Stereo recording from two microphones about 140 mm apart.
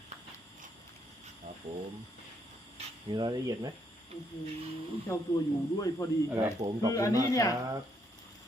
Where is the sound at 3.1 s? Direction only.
30° right (ahead or behind).